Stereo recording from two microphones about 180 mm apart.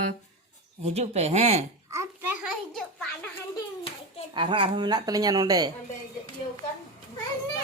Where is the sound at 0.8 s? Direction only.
35° right (ahead or behind).